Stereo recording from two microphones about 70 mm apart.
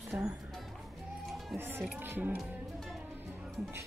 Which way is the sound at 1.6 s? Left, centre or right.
Right.